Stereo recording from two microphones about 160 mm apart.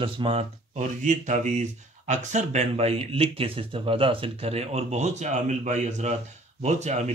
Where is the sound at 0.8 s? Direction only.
50° right (ahead or behind).